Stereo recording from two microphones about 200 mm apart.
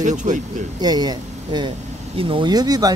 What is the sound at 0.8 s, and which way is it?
Speech, 20° right (ahead or behind).